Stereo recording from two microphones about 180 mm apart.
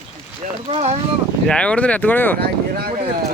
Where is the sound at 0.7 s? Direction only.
35° right (ahead or behind).